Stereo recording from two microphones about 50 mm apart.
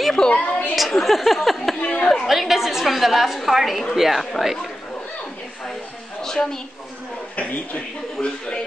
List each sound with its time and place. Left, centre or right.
0.3 s a sound: left
0.7 s a woman's voice: centre
1.9 s speech: left
2.1 s a woman's voice: centre
6.2 s a woman's voice: centre